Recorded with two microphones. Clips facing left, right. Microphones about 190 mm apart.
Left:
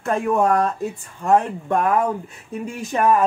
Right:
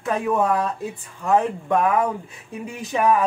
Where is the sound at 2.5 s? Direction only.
45° left (ahead or behind).